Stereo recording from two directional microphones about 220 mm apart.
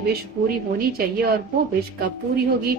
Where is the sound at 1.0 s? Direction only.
45° right (ahead or behind).